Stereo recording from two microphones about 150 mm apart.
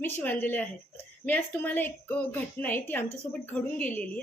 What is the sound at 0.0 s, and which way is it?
Speech, 10° left (ahead or behind).